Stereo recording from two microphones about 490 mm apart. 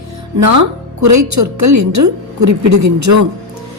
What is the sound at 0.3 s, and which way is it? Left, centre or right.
A woman's voice, right.